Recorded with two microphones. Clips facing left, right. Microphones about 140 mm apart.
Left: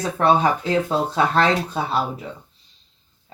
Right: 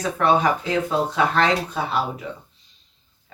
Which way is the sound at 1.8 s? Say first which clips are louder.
Left 1 dB; 30° left (ahead or behind).